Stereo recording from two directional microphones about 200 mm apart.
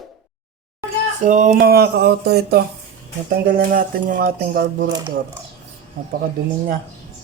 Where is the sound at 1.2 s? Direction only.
40° right (ahead or behind).